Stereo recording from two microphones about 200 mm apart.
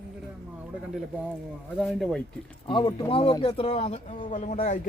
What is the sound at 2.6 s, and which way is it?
Speech, 25° left (ahead or behind).